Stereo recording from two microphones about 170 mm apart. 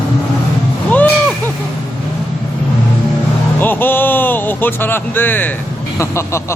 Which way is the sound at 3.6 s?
10° left (ahead or behind).